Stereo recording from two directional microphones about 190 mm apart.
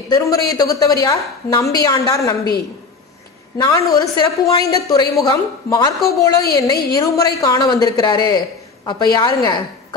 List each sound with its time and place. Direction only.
0.1 s a woman's voice: 20° left (ahead or behind)
3.5 s a woman's voice: 20° left (ahead or behind)